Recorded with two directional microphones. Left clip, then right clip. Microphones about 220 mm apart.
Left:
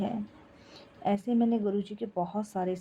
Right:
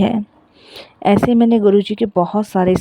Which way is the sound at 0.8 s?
45° right (ahead or behind).